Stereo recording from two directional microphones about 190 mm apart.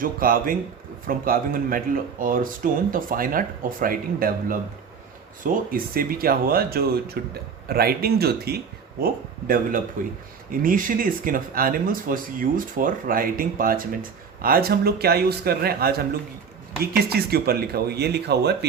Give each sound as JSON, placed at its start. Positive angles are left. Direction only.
{"t": 0.0, "sound": "speech", "side_deg": -45}